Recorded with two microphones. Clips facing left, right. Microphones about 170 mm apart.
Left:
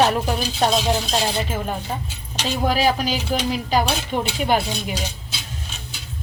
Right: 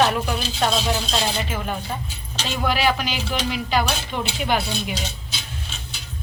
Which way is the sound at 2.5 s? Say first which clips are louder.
Left 2 dB; 40° left (ahead or behind).